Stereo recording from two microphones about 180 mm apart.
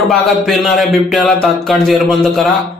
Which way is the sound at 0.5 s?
Centre (ahead or behind).